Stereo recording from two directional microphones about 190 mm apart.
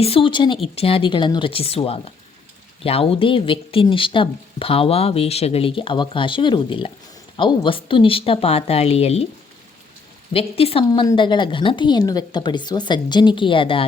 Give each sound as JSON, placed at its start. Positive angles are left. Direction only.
{"t": 0.0, "sound": "speech", "side_deg": 30}
{"t": 10.3, "sound": "speech", "side_deg": 30}